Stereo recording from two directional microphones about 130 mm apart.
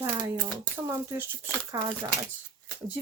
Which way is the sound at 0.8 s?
15° right (ahead or behind).